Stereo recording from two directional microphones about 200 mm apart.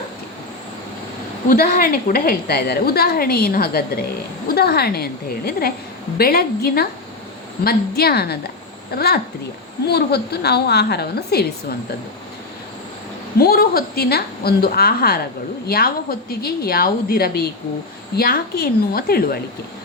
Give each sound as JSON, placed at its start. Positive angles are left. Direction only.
{"t": 1.5, "sound": "a woman's voice", "side_deg": 45}
{"t": 13.4, "sound": "a woman's voice", "side_deg": 50}